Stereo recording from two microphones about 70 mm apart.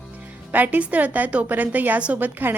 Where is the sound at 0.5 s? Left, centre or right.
Right.